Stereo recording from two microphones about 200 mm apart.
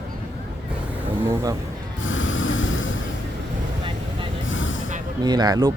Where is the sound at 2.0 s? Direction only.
75° left (ahead or behind).